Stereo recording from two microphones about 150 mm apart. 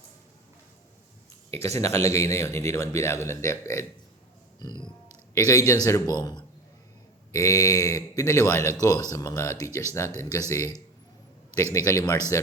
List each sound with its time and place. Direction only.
1.6 s a man's voice: 20° left (ahead or behind)
5.3 s a man's voice: 20° left (ahead or behind)
11.5 s a man's voice: 20° left (ahead or behind)